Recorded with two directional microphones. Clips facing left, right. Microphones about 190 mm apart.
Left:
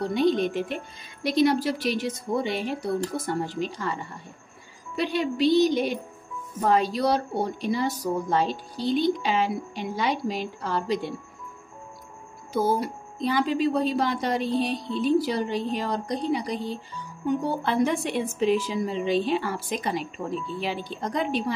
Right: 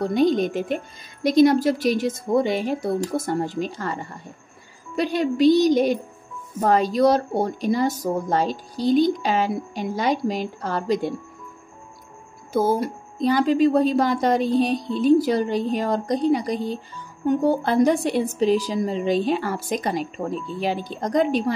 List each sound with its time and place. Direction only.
0.0 s speech: 45° right (ahead or behind)
12.5 s speech: 45° right (ahead or behind)